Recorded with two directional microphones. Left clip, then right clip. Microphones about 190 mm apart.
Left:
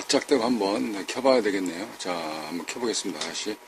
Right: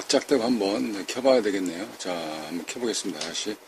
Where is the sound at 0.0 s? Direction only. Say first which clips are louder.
Even; 15° right (ahead or behind).